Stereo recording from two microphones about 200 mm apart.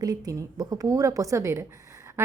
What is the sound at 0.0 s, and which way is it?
A woman's voice, 20° right (ahead or behind).